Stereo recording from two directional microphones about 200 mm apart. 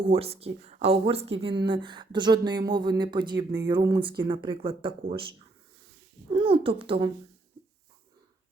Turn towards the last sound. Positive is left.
turn(degrees=-25)  # may be behind; listen again after turning